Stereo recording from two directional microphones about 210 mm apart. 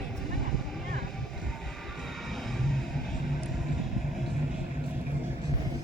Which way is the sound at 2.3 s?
Centre (ahead or behind).